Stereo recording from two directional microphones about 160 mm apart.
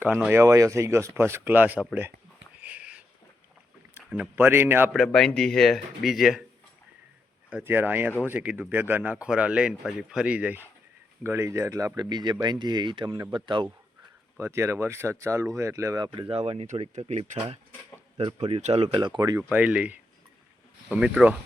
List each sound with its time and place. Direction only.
0.0 s speech: 10° right (ahead or behind)
2.6 s a sound: 10° right (ahead or behind)
4.1 s speech: 10° right (ahead or behind)
4.9 s speech: 5° left (ahead or behind)
7.5 s speech: 10° right (ahead or behind); by 13.7 s 30° right (ahead or behind)
14.3 s speech: 15° right (ahead or behind)
16.3 s speech: 40° right (ahead or behind)
19.4 s speech: 10° right (ahead or behind)